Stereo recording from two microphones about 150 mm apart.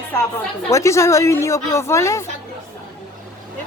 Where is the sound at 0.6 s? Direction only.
20° left (ahead or behind).